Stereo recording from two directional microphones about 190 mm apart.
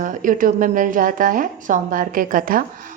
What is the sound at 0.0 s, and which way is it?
Speech, 45° right (ahead or behind).